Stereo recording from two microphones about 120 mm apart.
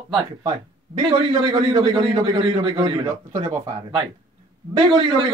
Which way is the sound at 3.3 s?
90° right.